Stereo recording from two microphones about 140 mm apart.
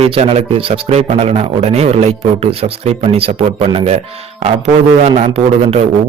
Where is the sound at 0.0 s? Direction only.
45° right (ahead or behind).